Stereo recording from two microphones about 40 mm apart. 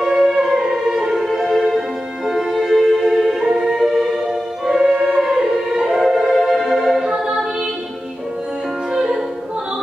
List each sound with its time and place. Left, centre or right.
0.0 s music: centre
3.2 s music: centre
7.0 s music: centre
8.9 s music: centre